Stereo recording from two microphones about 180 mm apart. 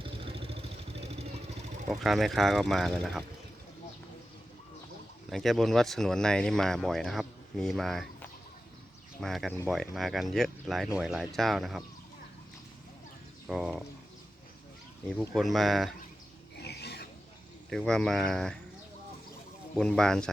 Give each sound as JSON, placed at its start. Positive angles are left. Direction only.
{"t": 0.0, "sound": "vehicle", "side_deg": -30}
{"t": 1.9, "sound": "speech", "side_deg": 0}
{"t": 5.3, "sound": "speech", "side_deg": 0}
{"t": 13.5, "sound": "speech", "side_deg": 0}
{"t": 15.4, "sound": "speech", "side_deg": 0}
{"t": 16.6, "sound": "filing", "side_deg": 65}
{"t": 17.7, "sound": "speech", "side_deg": 5}
{"t": 19.7, "sound": "speech", "side_deg": 5}